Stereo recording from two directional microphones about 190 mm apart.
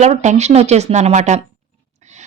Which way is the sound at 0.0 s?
40° right (ahead or behind).